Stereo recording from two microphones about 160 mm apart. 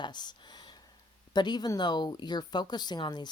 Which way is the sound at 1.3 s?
25° left (ahead or behind).